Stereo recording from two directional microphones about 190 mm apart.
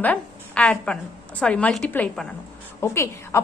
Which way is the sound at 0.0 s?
5° left (ahead or behind).